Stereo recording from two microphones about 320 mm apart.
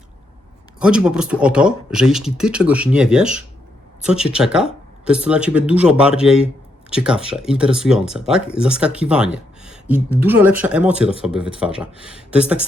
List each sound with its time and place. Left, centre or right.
0.8 s speech: centre